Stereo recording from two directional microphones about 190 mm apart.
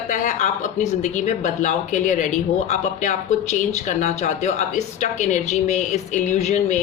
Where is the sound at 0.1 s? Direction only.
40° left (ahead or behind).